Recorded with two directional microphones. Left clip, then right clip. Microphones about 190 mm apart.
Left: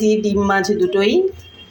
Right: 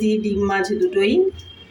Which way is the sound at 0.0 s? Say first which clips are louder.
Left 4 dB; 20° left (ahead or behind).